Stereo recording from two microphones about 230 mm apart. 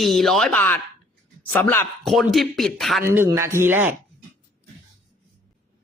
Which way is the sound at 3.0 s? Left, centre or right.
Centre.